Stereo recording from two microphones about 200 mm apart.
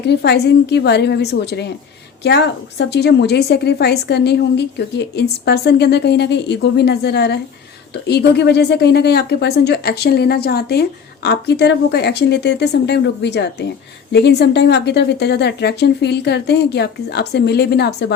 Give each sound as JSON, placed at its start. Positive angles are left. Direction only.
{"t": 0.0, "sound": "a woman's voice", "side_deg": 55}